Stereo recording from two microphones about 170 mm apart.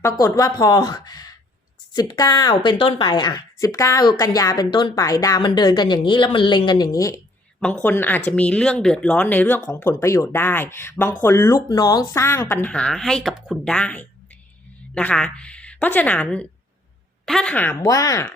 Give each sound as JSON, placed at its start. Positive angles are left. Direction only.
{"t": 0.0, "sound": "a woman's voice", "side_deg": 20}